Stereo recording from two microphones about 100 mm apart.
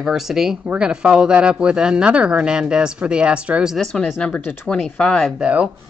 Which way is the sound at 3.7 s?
5° left (ahead or behind).